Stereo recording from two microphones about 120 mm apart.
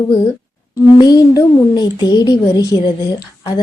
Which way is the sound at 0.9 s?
35° left (ahead or behind).